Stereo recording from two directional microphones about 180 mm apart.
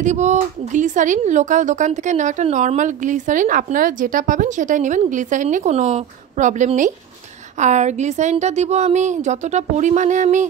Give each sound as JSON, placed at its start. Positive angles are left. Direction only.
{"t": 0.0, "sound": "a woman's voice", "side_deg": -40}